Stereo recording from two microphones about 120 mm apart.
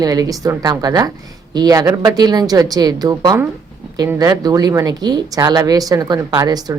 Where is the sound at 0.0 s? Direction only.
30° right (ahead or behind).